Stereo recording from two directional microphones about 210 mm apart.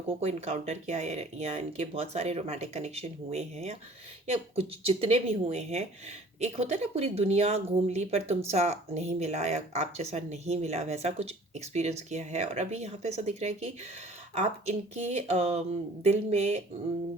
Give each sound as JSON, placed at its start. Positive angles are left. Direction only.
{"t": 0.1, "sound": "speech", "side_deg": -30}
{"t": 4.8, "sound": "speech", "side_deg": -30}